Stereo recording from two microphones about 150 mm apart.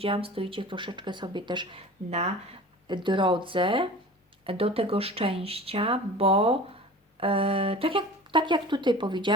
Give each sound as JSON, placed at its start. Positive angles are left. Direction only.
{"t": 0.0, "sound": "speech", "side_deg": -40}
{"t": 2.0, "sound": "speech", "side_deg": -45}
{"t": 2.8, "sound": "speech", "side_deg": -30}